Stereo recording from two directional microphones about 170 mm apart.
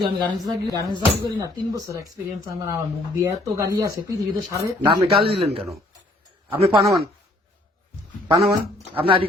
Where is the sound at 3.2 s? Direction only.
20° right (ahead or behind).